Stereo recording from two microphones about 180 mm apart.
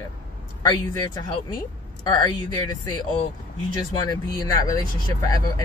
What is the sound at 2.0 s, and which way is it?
Speech, 25° left (ahead or behind).